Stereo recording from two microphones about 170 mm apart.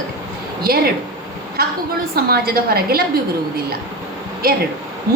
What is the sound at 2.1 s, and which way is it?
Speech, 65° right (ahead or behind).